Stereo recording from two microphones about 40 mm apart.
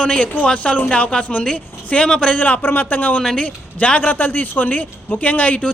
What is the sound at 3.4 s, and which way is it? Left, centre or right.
Speech, left.